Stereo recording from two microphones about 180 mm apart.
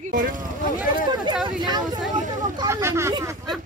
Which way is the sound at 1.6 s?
25° right (ahead or behind).